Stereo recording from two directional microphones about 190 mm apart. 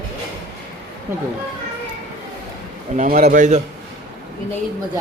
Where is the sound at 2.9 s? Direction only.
45° right (ahead or behind).